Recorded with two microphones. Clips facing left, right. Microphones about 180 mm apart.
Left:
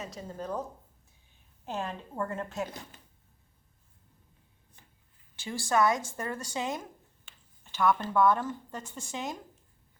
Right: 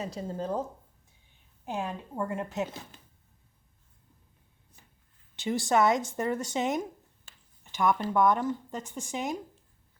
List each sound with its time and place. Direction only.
0.0 s a woman's voice: 30° right (ahead or behind)
1.6 s speech: 15° right (ahead or behind)
5.4 s a woman's voice: 20° right (ahead or behind)